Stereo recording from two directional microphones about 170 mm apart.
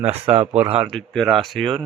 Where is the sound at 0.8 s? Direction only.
5° left (ahead or behind).